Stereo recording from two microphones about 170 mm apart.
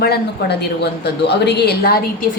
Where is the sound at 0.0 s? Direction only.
75° left (ahead or behind).